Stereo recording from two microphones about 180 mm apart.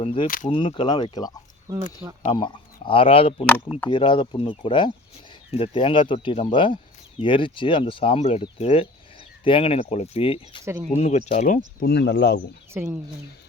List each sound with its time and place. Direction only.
0.0 s speech: 30° left (ahead or behind)
1.7 s speech: 15° right (ahead or behind)
2.3 s speech: 25° left (ahead or behind); by 12.4 s 65° left (ahead or behind)
12.7 s speech: 10° right (ahead or behind)